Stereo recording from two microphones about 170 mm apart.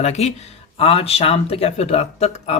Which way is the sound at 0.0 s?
40° left (ahead or behind).